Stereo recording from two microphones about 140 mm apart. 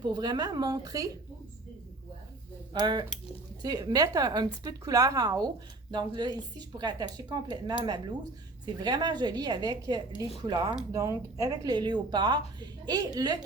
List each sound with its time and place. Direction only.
0.0 s a woman's voice: 30° right (ahead or behind)
2.7 s a woman's voice: 30° right (ahead or behind)